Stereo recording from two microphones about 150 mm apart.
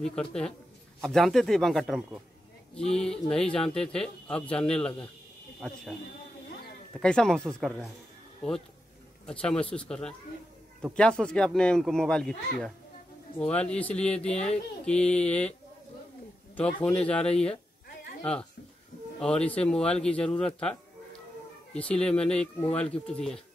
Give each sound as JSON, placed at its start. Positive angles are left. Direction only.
{"t": 0.0, "sound": "speech", "side_deg": 5}
{"t": 6.9, "sound": "speech", "side_deg": 5}
{"t": 16.5, "sound": "speech", "side_deg": 10}
{"t": 19.1, "sound": "speech", "side_deg": 5}